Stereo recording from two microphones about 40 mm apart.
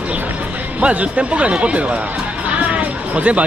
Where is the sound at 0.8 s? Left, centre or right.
Right.